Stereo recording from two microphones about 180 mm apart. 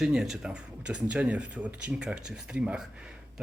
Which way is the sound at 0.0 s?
5° right (ahead or behind).